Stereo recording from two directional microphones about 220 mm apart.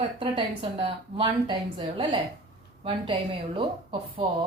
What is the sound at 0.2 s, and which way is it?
Speech, 25° right (ahead or behind).